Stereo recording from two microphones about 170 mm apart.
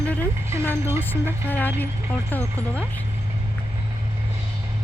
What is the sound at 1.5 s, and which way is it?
Speech, 10° left (ahead or behind).